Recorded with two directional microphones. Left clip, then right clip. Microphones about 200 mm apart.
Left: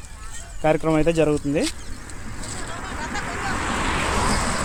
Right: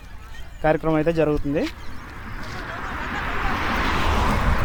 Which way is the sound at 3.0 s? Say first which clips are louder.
Right 1 dB; 30° right (ahead or behind).